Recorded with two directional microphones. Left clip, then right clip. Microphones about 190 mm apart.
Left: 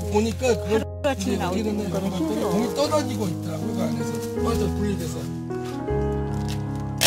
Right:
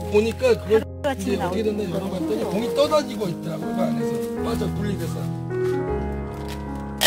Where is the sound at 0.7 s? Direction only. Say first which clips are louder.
Right 3 dB; 35° left (ahead or behind).